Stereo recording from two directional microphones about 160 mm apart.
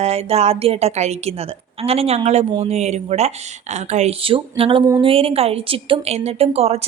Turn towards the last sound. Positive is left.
turn(degrees=-40)  # may be behind; listen again after turning